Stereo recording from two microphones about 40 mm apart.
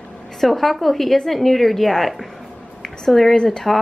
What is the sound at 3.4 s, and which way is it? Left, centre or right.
Speech, left.